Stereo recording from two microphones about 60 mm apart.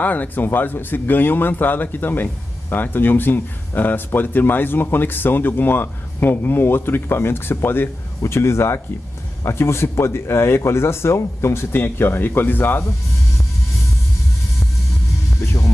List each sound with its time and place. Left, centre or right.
0.0 s speech: left